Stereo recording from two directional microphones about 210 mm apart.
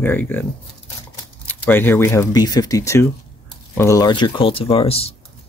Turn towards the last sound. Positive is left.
turn(degrees=30)  # may be behind; listen again after turning